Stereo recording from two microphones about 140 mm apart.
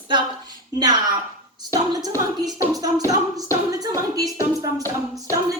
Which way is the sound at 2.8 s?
25° right (ahead or behind).